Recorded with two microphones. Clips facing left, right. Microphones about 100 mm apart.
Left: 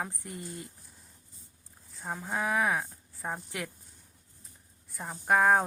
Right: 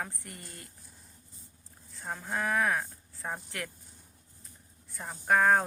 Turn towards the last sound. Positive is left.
turn(degrees=5)  # may be behind; listen again after turning